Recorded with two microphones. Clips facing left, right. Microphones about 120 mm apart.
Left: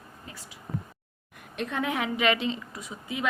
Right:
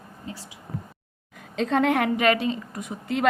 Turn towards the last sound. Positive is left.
turn(degrees=-65)  # may be behind; listen again after turning